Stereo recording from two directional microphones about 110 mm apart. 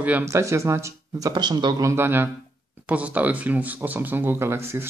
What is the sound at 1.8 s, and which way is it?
Speech, 20° right (ahead or behind).